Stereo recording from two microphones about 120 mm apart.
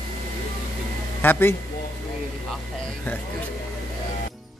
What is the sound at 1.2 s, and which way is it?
Speech, 15° left (ahead or behind).